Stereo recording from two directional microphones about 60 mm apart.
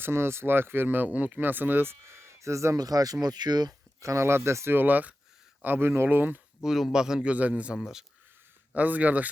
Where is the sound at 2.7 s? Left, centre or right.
Right.